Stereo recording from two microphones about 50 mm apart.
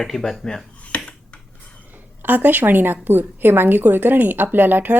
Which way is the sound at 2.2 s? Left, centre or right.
Right.